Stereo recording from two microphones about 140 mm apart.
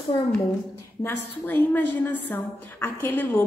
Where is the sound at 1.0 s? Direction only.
15° left (ahead or behind).